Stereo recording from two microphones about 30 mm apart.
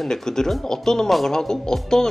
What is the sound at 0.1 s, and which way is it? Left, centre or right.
Speech, centre.